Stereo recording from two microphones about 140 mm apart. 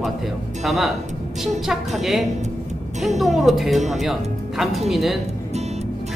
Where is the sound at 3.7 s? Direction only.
55° right (ahead or behind).